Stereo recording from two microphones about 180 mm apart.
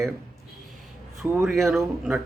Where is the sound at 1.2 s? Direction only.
15° right (ahead or behind).